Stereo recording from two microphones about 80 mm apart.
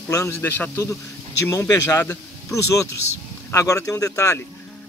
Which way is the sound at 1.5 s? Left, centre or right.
Left.